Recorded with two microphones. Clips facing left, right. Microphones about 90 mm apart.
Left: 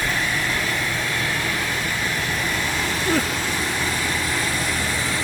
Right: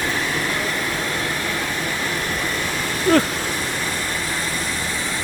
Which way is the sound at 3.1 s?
55° right (ahead or behind).